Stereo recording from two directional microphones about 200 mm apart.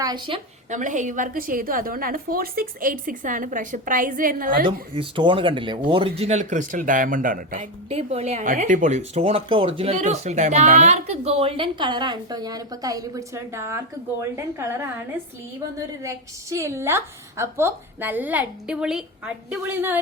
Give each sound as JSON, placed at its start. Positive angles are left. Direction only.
{"t": 0.0, "sound": "speech", "side_deg": -20}
{"t": 0.7, "sound": "a woman's voice", "side_deg": -40}
{"t": 4.9, "sound": "speech", "side_deg": -25}
{"t": 16.0, "sound": "a woman's voice", "side_deg": -15}